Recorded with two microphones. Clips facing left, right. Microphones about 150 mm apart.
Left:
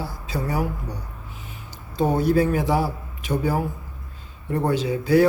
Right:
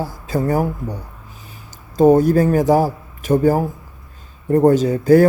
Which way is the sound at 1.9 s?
45° right (ahead or behind).